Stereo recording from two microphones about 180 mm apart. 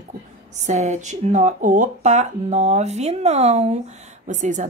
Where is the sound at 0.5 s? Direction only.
40° right (ahead or behind).